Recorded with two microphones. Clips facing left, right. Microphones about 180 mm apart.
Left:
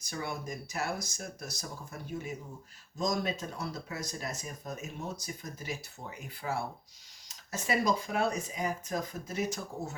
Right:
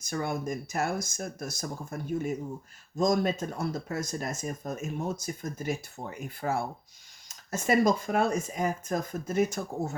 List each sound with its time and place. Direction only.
0.0 s speech: 50° right (ahead or behind)